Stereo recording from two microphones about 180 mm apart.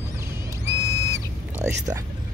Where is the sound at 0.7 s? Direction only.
20° right (ahead or behind).